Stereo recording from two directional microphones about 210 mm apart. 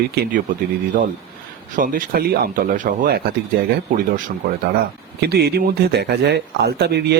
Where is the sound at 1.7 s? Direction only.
40° right (ahead or behind).